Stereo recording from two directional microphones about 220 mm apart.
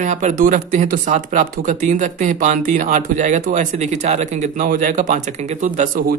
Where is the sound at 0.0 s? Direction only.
35° right (ahead or behind).